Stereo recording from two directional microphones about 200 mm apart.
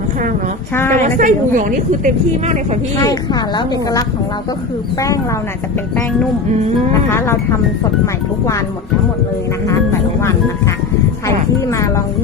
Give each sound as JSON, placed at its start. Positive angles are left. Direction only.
{"t": 0.9, "sound": "a woman's voice", "side_deg": -40}
{"t": 3.0, "sound": "speech", "side_deg": 20}
{"t": 7.1, "sound": "speech", "side_deg": 10}
{"t": 11.6, "sound": "music", "side_deg": 15}